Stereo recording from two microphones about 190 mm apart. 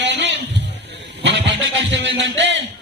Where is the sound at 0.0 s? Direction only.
70° right (ahead or behind).